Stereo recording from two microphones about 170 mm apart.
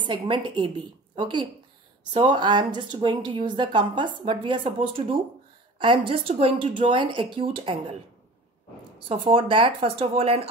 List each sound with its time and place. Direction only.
0.0 s a woman's voice: 30° right (ahead or behind)
9.1 s speech: 35° right (ahead or behind)